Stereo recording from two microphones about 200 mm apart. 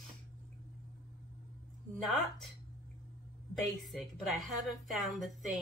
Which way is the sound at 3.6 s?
Centre (ahead or behind).